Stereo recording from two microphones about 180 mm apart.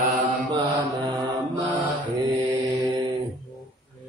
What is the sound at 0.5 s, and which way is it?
Mantra, 25° right (ahead or behind).